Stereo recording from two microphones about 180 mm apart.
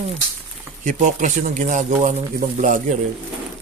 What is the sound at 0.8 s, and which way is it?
Speech, 45° right (ahead or behind).